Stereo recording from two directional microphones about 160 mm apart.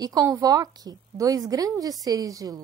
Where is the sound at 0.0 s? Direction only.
25° right (ahead or behind).